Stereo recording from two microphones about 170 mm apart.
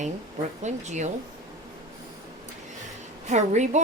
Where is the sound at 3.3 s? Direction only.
45° right (ahead or behind).